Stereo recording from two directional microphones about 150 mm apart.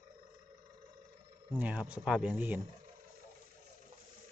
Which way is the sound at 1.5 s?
10° right (ahead or behind).